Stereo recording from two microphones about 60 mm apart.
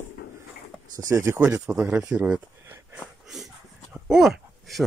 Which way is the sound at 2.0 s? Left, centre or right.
Centre.